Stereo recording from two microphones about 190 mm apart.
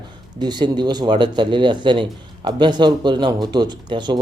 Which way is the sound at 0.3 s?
20° right (ahead or behind).